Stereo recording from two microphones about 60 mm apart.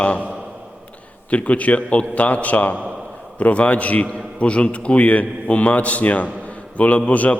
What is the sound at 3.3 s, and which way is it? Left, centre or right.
A man's voice, left.